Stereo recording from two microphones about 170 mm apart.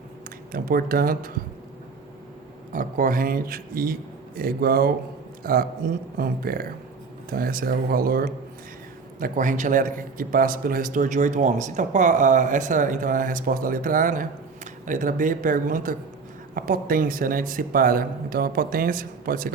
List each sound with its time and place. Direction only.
0.3 s speech: 60° right (ahead or behind)
2.7 s a man's voice: 55° right (ahead or behind)